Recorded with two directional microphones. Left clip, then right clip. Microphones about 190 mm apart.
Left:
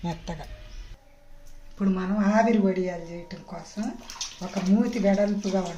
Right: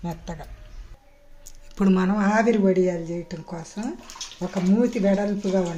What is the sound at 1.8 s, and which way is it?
Speech, 65° right (ahead or behind).